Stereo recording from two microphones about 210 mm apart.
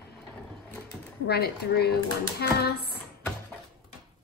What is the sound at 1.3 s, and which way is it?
A woman's voice, 50° left (ahead or behind).